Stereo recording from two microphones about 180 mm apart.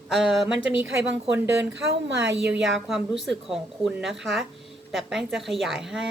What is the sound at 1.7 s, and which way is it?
Speech, 75° right (ahead or behind).